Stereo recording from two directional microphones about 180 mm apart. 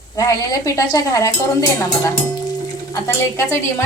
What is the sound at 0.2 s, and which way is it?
A woman's voice, 20° left (ahead or behind).